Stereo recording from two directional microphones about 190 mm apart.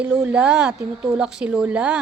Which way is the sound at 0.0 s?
5° right (ahead or behind).